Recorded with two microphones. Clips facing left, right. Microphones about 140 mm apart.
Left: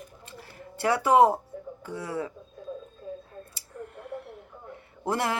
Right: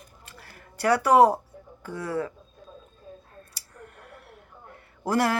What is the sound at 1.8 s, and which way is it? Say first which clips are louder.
Speech: right 3 dB; 25° left (ahead or behind).